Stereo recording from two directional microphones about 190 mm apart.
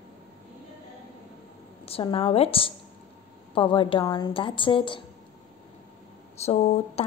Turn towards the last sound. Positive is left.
turn(degrees=35)  # may be behind; listen again after turning